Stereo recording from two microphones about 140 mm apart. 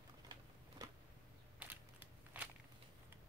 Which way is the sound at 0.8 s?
25° right (ahead or behind).